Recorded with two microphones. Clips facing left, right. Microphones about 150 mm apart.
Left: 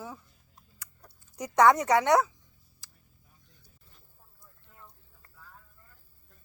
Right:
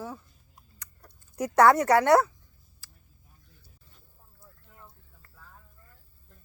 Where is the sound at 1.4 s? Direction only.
5° right (ahead or behind).